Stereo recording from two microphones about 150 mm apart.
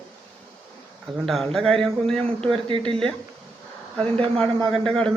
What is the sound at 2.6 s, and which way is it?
Speech, 35° right (ahead or behind).